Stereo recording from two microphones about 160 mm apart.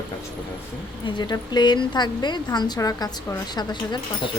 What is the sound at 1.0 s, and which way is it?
A woman's voice, 30° left (ahead or behind).